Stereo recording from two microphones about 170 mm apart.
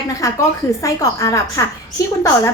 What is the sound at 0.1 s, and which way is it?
A woman's voice, 20° left (ahead or behind).